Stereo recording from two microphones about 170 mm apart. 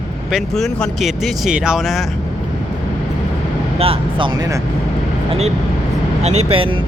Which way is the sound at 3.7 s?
35° right (ahead or behind).